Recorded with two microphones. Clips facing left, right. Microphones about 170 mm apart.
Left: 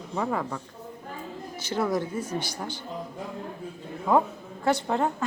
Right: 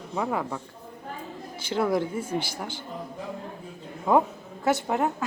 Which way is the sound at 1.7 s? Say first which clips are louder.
Right 2 dB; 10° right (ahead or behind).